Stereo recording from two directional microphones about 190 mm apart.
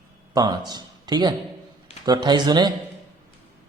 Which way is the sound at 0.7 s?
20° right (ahead or behind).